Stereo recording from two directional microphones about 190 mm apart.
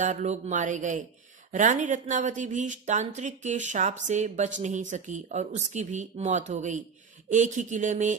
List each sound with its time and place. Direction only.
0.0 s speech: 40° right (ahead or behind)